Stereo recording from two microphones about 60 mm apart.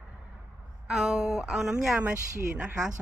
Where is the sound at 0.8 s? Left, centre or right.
Centre.